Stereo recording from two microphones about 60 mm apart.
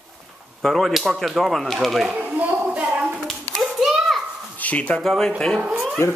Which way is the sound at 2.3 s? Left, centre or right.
Right.